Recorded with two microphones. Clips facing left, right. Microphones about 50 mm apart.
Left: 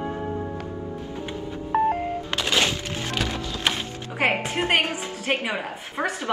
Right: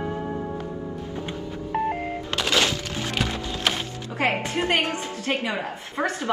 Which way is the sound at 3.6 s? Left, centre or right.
Centre.